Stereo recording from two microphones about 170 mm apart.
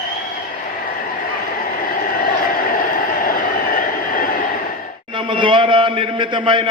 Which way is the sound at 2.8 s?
55° left (ahead or behind).